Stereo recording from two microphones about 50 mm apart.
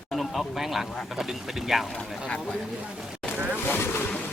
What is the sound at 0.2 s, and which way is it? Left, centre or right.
Speech, centre.